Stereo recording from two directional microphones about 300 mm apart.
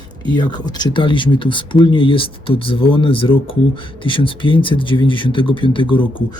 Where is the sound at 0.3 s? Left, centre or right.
Centre.